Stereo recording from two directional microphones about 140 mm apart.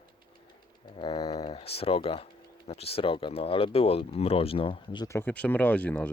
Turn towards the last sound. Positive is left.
turn(degrees=10)  # may be behind; listen again after turning